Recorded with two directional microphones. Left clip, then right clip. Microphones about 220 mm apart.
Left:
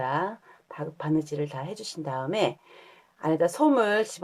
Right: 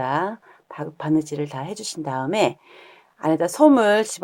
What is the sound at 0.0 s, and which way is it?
Speech, 35° right (ahead or behind).